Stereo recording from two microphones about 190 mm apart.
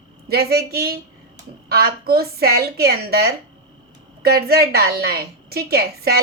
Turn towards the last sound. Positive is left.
turn(degrees=-55)  # may be behind; listen again after turning